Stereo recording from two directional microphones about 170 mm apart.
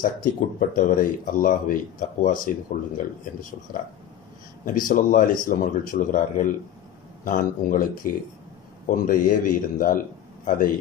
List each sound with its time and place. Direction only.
0.0 s speech: 50° left (ahead or behind)
3.7 s speech: 60° left (ahead or behind)